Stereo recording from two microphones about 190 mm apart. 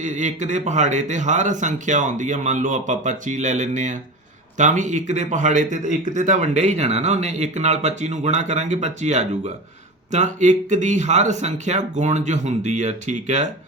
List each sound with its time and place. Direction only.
0.0 s speech: 40° right (ahead or behind)